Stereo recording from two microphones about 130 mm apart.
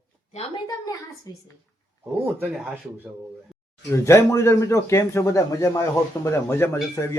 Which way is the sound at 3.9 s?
20° left (ahead or behind).